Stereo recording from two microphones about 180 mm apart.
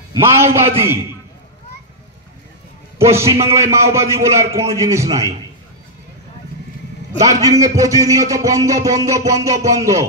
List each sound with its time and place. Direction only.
0.1 s a man's voice: 15° right (ahead or behind)
3.0 s a man's voice: 15° right (ahead or behind)
7.2 s a man's voice: 20° right (ahead or behind)